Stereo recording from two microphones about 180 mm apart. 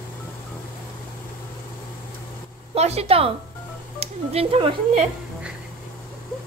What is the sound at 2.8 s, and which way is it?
A woman's voice, 35° right (ahead or behind).